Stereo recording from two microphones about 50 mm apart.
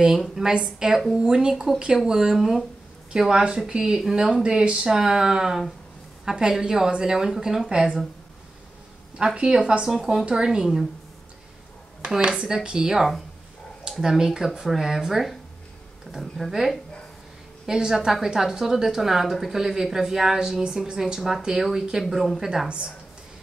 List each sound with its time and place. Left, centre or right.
0.0 s a woman's voice: centre
4.4 s a woman's voice: centre
9.2 s a woman's voice: centre
12.1 s a woman's voice: centre
22.7 s a woman's voice: centre